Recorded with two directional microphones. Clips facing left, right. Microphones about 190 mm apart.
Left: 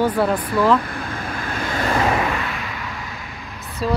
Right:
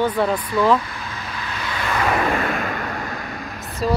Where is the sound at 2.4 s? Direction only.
45° right (ahead or behind).